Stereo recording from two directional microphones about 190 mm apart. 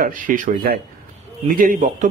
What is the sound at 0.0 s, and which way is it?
Speech, 45° right (ahead or behind).